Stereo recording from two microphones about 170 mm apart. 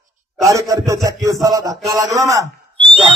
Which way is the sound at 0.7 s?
20° right (ahead or behind).